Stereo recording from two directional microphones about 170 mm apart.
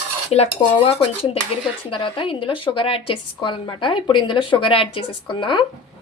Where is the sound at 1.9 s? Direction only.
30° left (ahead or behind).